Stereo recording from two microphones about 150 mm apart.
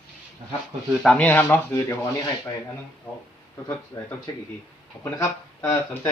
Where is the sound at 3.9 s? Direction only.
20° left (ahead or behind).